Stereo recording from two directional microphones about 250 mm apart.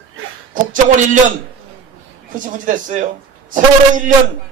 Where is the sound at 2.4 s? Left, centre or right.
Right.